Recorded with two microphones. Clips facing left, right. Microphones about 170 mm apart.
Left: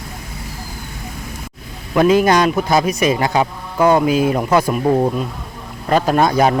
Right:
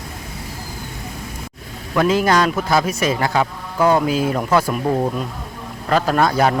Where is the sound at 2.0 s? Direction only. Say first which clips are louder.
Left 4 dB; 20° left (ahead or behind).